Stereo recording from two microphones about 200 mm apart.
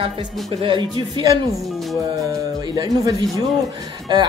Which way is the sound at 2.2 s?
20° right (ahead or behind).